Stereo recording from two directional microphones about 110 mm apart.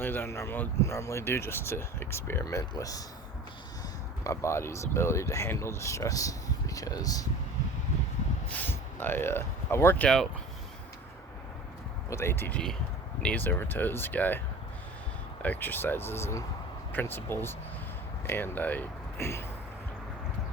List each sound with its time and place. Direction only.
0.0 s speech: 20° left (ahead or behind)
4.2 s speech: 25° left (ahead or behind)
8.4 s speech: 20° left (ahead or behind)
12.1 s speech: 20° left (ahead or behind)